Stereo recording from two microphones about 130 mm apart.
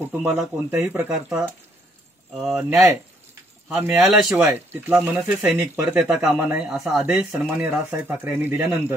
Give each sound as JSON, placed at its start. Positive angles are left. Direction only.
{"t": 0.1, "sound": "speech", "side_deg": -15}
{"t": 4.0, "sound": "speech", "side_deg": -5}
{"t": 4.4, "sound": "speech", "side_deg": -15}
{"t": 5.9, "sound": "speech", "side_deg": -5}
{"t": 6.3, "sound": "speech", "side_deg": -15}
{"t": 6.6, "sound": "speech", "side_deg": -5}